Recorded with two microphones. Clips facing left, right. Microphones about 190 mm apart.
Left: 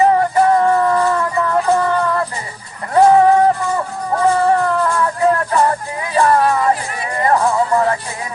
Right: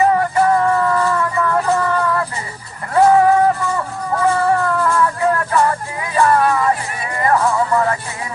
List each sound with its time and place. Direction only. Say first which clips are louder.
0.0 s music: left 2 dB; 30° left (ahead or behind)